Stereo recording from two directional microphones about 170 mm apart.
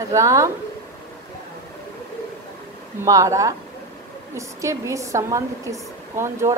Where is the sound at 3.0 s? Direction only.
20° right (ahead or behind).